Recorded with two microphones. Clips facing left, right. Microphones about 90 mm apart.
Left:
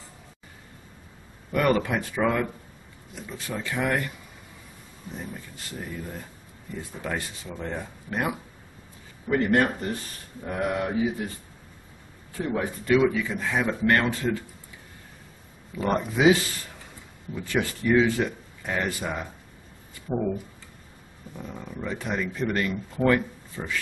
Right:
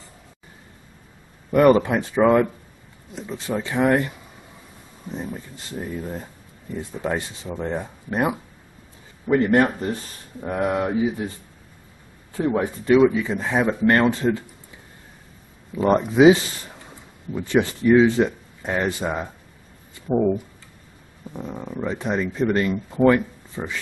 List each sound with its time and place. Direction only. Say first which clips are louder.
1.5 s speech: right 8 dB; 25° right (ahead or behind)
5.1 s speech: right 6 dB; 25° right (ahead or behind)
12.4 s speech: right 6 dB; 20° right (ahead or behind)
15.7 s speech: right 7 dB; 25° right (ahead or behind)
21.3 s speech: right 6 dB; 20° right (ahead or behind)